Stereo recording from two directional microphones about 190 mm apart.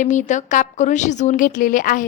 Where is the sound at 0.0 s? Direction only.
40° left (ahead or behind).